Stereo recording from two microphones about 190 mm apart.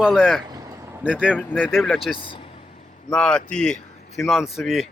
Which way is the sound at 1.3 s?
10° left (ahead or behind).